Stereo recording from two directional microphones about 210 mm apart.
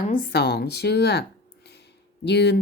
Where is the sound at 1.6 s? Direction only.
55° left (ahead or behind).